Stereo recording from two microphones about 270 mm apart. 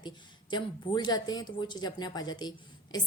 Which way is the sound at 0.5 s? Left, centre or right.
Centre.